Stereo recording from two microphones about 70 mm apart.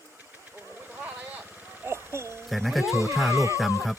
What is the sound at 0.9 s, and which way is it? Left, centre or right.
Vehicle, right.